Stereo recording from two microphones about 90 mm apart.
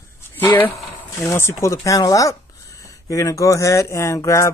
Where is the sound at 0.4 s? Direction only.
20° left (ahead or behind).